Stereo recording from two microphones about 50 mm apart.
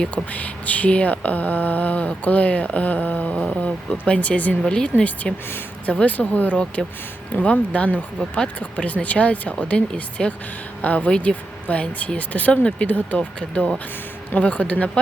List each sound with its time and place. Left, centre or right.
0.3 s a sound: left
3.3 s speech: centre
4.0 s speech: left
4.6 s speech: centre
5.8 s speech: left
6.1 s a sound: left
6.8 s speech: centre
7.3 s speech: left
10.8 s a sound: left
11.2 s speech: left
13.5 s speech: centre
14.3 s speech: left